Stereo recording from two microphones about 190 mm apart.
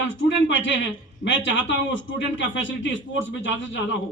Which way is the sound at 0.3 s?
75° left (ahead or behind).